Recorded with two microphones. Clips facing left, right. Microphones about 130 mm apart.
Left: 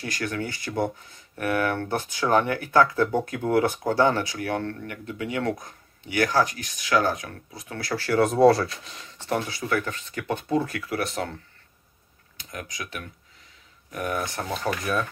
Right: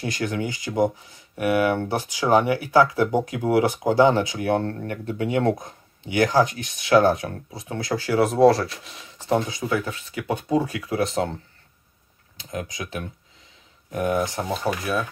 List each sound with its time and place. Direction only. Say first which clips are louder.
0.0 s speech: right 4 dB; 20° right (ahead or behind)
8.2 s speech: right 1 dB; centre (ahead or behind)
9.5 s speech: right 2 dB; 15° right (ahead or behind)
12.4 s speech: right 5 dB; 25° right (ahead or behind)
14.5 s speech: left 1 dB; 10° right (ahead or behind)